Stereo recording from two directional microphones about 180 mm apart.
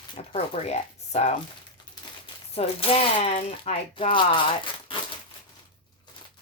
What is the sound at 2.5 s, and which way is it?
Speech, 30° left (ahead or behind).